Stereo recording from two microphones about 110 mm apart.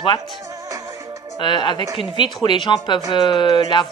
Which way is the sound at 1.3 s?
45° left (ahead or behind).